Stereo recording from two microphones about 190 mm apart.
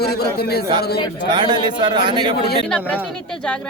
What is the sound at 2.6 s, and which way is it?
Speech, 5° left (ahead or behind).